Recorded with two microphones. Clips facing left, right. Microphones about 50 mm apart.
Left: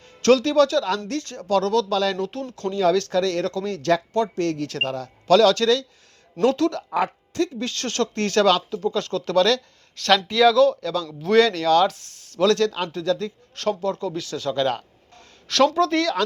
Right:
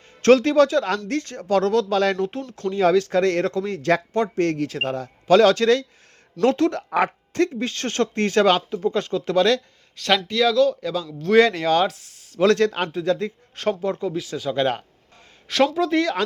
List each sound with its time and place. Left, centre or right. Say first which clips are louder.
0.2 s a woman's voice: right 2 dB; right
7.6 s speech: right 2 dB; right
9.9 s speech: left 1 dB; centre
10.8 s speech: even; centre
11.9 s speech: left 1 dB; centre
12.4 s speech: right 1 dB; right
14.1 s speech: right 1 dB; centre
14.5 s speech: right 1 dB; right